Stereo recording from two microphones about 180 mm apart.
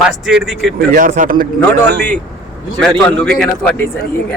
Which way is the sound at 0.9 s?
50° right (ahead or behind).